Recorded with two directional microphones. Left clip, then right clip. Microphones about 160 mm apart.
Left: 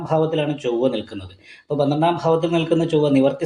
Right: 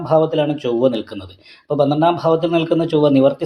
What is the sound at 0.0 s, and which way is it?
Speech, 35° right (ahead or behind).